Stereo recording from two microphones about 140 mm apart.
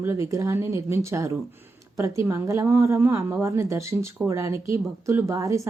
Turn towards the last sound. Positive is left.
turn(degrees=-25)  # may be behind; listen again after turning